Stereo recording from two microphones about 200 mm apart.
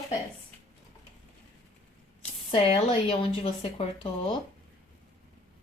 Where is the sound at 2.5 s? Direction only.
25° left (ahead or behind).